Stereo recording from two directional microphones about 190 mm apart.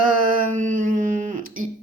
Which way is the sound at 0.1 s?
45° right (ahead or behind).